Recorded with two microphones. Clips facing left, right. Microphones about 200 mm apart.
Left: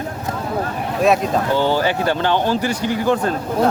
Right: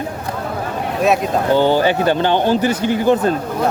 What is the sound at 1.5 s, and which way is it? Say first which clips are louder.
Speech: right 6 dB; 25° right (ahead or behind).